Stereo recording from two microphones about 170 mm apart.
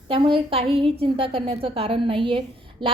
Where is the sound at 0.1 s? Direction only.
30° right (ahead or behind).